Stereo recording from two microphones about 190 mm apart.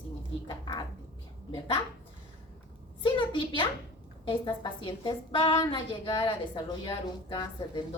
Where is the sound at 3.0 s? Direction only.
25° left (ahead or behind).